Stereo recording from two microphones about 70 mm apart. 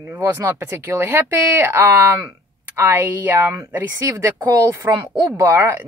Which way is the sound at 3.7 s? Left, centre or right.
Right.